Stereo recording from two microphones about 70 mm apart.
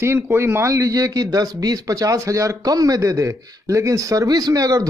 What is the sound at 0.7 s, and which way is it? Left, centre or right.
Speech, right.